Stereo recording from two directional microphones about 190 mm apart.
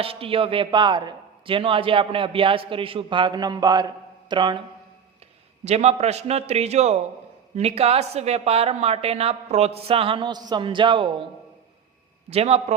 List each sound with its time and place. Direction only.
0.0 s a man's voice: 30° right (ahead or behind)
5.6 s speech: 35° right (ahead or behind)
12.3 s speech: 35° right (ahead or behind)